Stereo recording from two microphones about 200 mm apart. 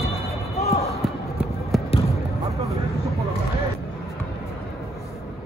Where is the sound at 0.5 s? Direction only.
30° left (ahead or behind).